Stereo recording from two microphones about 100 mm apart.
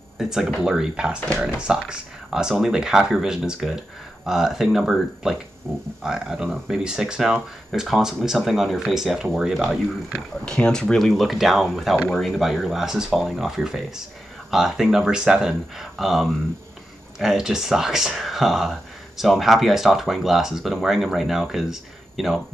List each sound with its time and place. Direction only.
0.2 s speech: 5° right (ahead or behind)
5.7 s speech: 20° right (ahead or behind)
6.0 s speech: 5° right (ahead or behind)
10.4 s speech: 5° left (ahead or behind)